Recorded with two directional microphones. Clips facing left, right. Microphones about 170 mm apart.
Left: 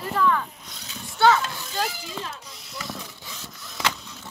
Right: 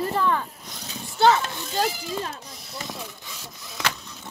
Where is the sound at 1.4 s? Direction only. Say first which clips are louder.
Right 1 dB; 20° right (ahead or behind).